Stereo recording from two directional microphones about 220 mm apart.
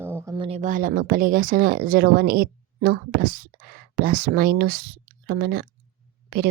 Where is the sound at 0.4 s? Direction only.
30° right (ahead or behind).